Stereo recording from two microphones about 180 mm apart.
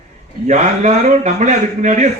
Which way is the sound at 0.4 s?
40° right (ahead or behind).